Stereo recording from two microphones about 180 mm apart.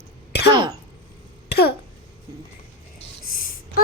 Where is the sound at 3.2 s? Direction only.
50° left (ahead or behind).